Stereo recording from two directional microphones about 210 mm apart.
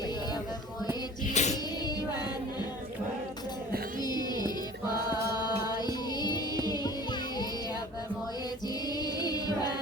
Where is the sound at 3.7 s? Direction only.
45° right (ahead or behind).